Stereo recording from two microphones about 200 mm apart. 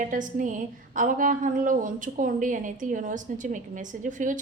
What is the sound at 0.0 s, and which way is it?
A woman's voice, 40° right (ahead or behind).